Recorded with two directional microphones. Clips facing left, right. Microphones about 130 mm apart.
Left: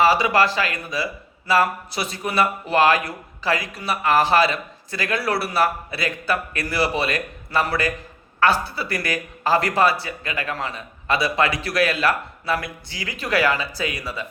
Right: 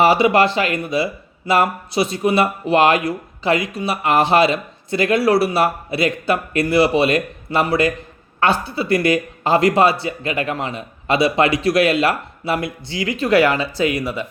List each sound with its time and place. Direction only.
0.0 s speech: 25° right (ahead or behind)